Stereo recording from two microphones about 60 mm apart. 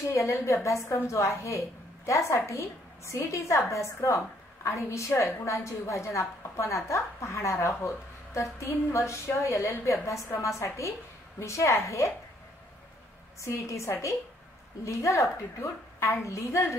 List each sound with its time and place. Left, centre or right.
0.1 s a woman's voice: left
13.4 s a woman's voice: left